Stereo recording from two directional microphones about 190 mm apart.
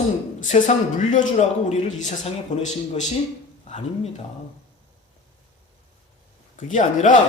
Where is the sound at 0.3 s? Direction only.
40° left (ahead or behind).